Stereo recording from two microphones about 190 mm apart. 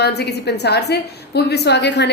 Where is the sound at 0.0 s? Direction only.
60° left (ahead or behind).